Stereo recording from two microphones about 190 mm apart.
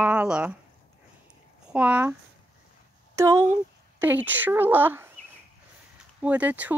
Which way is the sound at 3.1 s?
15° right (ahead or behind).